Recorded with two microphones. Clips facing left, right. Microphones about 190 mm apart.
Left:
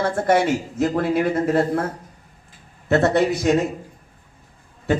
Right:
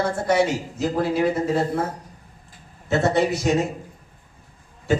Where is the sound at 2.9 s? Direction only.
60° left (ahead or behind).